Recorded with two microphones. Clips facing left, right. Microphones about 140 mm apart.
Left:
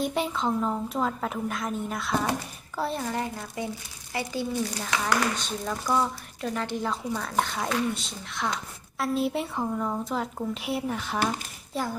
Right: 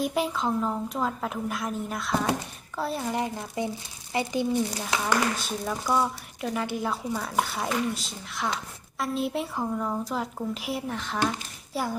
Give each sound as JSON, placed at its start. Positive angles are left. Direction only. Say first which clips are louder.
{"t": 0.0, "sound": "a woman's voice", "louder": "even", "side_deg": 0}